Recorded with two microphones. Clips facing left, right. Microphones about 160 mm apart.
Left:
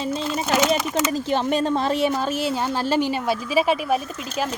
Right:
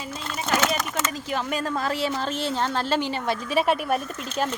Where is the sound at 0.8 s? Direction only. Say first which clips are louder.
Left 5 dB; 10° left (ahead or behind).